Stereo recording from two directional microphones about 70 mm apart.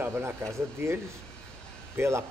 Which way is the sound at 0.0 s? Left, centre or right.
Right.